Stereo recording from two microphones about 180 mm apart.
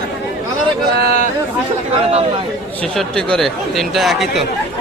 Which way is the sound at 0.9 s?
55° right (ahead or behind).